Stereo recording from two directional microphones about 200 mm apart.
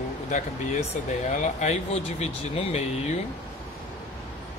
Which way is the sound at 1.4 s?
35° left (ahead or behind).